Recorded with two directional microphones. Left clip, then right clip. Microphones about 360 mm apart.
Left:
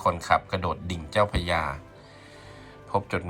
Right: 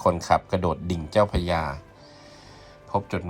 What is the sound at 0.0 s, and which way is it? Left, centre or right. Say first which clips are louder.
Speech: right 2 dB; centre.